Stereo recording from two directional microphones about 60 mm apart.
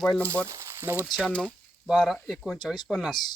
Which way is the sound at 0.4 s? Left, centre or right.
Right.